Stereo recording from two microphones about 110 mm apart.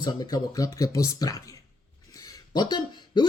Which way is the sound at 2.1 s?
35° left (ahead or behind).